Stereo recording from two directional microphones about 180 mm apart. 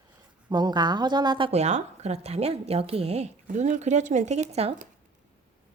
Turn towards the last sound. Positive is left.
turn(degrees=-35)  # may be behind; listen again after turning